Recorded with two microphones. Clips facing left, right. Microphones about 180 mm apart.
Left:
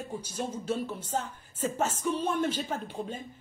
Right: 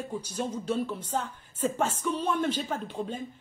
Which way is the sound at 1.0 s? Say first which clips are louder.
Right 1 dB; 45° left (ahead or behind).